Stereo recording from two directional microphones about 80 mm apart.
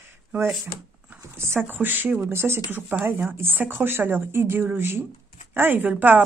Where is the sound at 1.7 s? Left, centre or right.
Right.